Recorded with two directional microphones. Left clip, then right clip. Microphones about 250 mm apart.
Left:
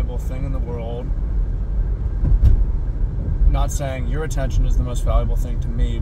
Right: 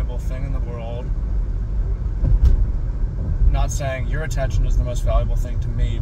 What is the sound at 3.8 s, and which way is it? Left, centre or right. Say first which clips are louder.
Speech: even; left.